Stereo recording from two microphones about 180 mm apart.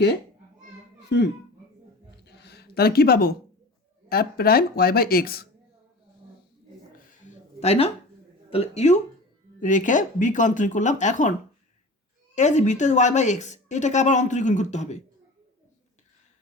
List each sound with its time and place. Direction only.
2.2 s a sound: 65° left (ahead or behind)
4.1 s speech: 60° left (ahead or behind)
7.6 s a woman's voice: 35° left (ahead or behind)